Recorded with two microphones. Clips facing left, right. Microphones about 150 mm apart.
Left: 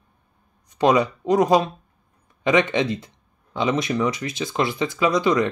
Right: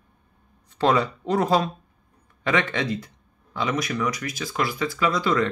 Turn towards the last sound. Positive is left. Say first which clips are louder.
# left 3 dB
turn(degrees=20)  # may be behind; listen again after turning